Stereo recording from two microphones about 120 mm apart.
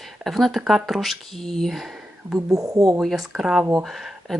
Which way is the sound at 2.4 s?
30° right (ahead or behind).